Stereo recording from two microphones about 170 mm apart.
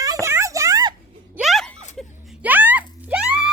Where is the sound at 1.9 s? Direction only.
Centre (ahead or behind).